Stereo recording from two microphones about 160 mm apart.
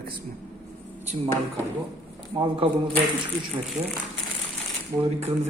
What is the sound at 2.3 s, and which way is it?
Speech, 35° right (ahead or behind).